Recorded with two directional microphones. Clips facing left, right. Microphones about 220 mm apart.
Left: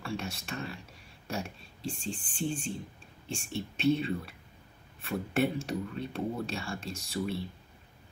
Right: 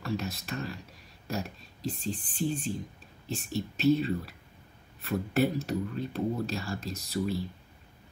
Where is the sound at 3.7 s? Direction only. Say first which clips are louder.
Right 3 dB; centre (ahead or behind).